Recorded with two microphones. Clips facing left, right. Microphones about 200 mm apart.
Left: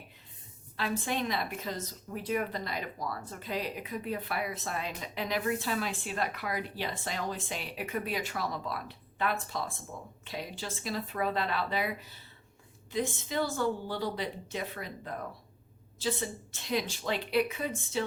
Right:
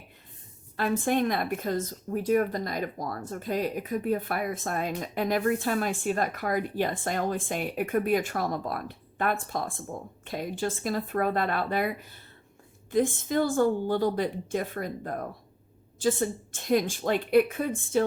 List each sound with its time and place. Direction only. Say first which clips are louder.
0.8 s a woman's voice: right 7 dB; 50° right (ahead or behind)